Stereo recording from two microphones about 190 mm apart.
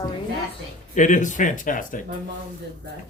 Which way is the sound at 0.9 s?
40° left (ahead or behind).